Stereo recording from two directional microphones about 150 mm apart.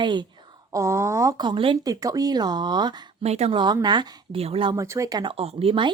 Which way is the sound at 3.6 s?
30° right (ahead or behind).